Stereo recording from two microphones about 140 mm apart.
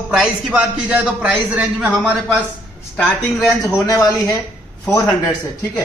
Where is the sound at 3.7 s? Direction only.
25° left (ahead or behind).